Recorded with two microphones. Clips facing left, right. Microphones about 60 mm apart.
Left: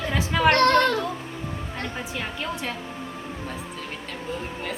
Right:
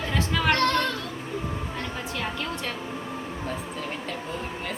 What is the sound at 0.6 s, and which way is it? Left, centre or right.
Children playing, left.